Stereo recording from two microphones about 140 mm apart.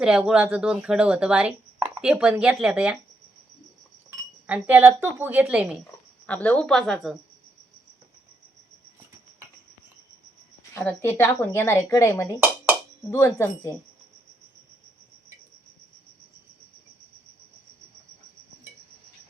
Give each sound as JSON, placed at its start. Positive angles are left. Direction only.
{"t": 0.0, "sound": "speech", "side_deg": -5}
{"t": 4.4, "sound": "a woman's voice", "side_deg": -10}
{"t": 6.2, "sound": "speech", "side_deg": 10}
{"t": 10.8, "sound": "a woman's voice", "side_deg": 15}